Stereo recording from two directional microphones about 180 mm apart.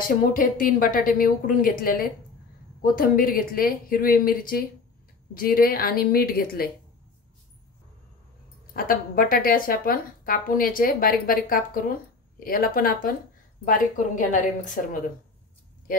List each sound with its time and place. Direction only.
0.0 s speech: 50° left (ahead or behind)
8.7 s speech: 55° left (ahead or behind)